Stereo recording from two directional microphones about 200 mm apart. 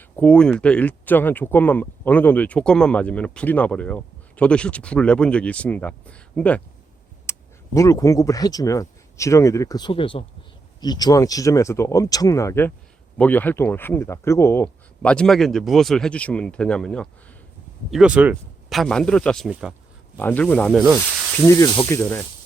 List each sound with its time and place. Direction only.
0.0 s speech: 5° left (ahead or behind)